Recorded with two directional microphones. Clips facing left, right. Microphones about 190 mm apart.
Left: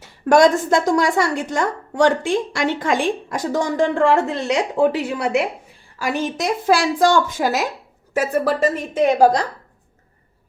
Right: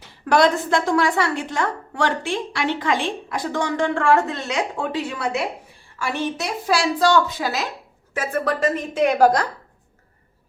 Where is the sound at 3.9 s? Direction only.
25° left (ahead or behind); by 7.6 s 45° left (ahead or behind).